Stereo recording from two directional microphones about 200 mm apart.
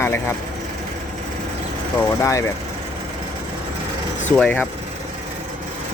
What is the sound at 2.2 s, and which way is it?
Speech, 15° left (ahead or behind).